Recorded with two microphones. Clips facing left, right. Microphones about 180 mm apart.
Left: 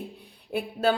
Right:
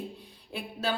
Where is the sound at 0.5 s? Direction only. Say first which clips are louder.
Left 7 dB; 55° left (ahead or behind).